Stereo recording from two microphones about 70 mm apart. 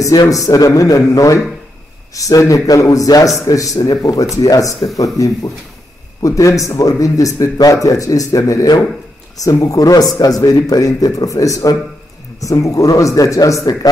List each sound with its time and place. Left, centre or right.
0.3 s speech: left